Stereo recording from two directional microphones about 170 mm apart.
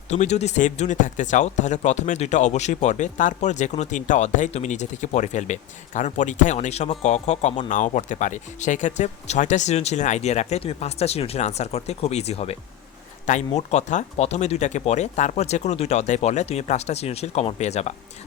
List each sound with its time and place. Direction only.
0.1 s speech: 40° left (ahead or behind)
13.6 s speech: 40° left (ahead or behind)